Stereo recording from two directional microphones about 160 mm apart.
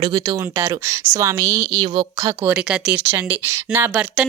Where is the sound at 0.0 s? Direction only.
25° right (ahead or behind).